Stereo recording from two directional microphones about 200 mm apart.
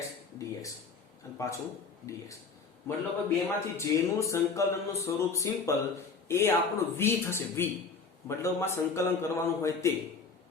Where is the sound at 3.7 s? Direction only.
15° left (ahead or behind).